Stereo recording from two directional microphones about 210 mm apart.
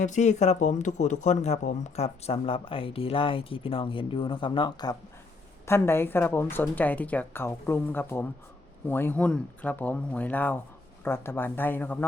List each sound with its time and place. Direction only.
0.0 s speech: 35° left (ahead or behind); by 12.0 s 10° left (ahead or behind)